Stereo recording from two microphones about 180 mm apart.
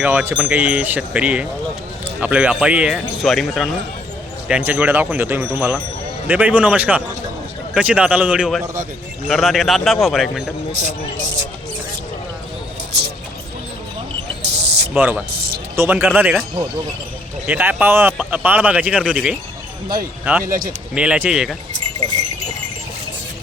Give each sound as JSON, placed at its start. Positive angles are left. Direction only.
{"t": 0.0, "sound": "speech", "side_deg": -10}
{"t": 10.8, "sound": "speech", "side_deg": -40}
{"t": 12.9, "sound": "a sound", "side_deg": -65}
{"t": 14.4, "sound": "a sound", "side_deg": -70}
{"t": 14.9, "sound": "speech", "side_deg": -10}
{"t": 15.4, "sound": "music", "side_deg": -60}
{"t": 15.7, "sound": "speech", "side_deg": -15}
{"t": 17.4, "sound": "speech", "side_deg": -10}
{"t": 20.4, "sound": "speech", "side_deg": -50}
{"t": 20.9, "sound": "speech", "side_deg": -5}